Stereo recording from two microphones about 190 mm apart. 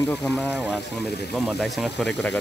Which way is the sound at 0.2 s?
5° right (ahead or behind).